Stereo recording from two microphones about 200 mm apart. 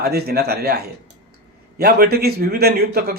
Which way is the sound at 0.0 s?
50° right (ahead or behind).